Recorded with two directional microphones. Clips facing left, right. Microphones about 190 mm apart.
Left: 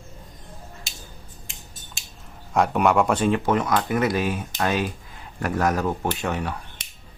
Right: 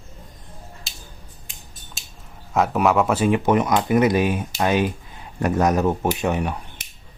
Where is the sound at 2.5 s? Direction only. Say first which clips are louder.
Right 1 dB; centre (ahead or behind).